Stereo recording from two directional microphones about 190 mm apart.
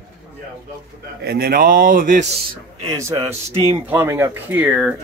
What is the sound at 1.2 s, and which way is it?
Speech, 50° right (ahead or behind).